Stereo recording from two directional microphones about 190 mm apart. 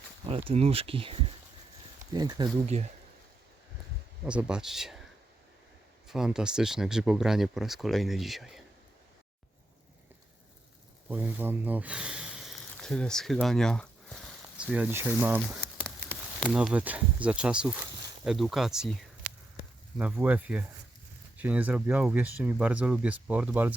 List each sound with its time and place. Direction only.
0.3 s speech: 30° right (ahead or behind)
2.1 s speech: 20° right (ahead or behind)
2.6 s speech: 35° right (ahead or behind)
4.3 s speech: 5° right (ahead or behind)
6.1 s speech: 5° right (ahead or behind)
11.1 s speech: 10° right (ahead or behind)
20.0 s speech: 10° right (ahead or behind)